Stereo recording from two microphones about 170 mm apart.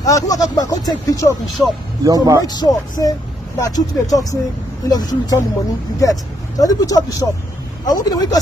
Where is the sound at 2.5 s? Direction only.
25° left (ahead or behind).